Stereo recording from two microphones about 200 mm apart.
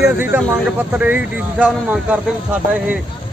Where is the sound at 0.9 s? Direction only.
5° right (ahead or behind).